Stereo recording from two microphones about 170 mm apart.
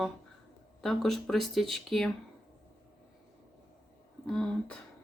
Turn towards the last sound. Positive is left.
turn(degrees=5)  # may be behind; listen again after turning